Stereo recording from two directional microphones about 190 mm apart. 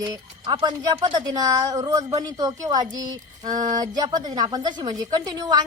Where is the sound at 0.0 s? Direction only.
20° right (ahead or behind).